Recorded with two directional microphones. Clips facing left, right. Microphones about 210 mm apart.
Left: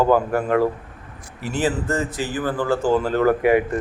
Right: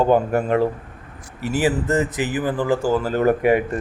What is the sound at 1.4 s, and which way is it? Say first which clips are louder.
A man's voice: right 2 dB; 10° right (ahead or behind).